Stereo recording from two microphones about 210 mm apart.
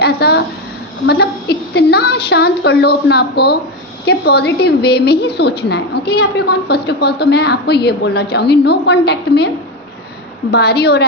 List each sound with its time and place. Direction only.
0.0 s a sound: 50° left (ahead or behind)
1.0 s a woman's voice: 50° left (ahead or behind)
10.5 s a woman's voice: 50° left (ahead or behind)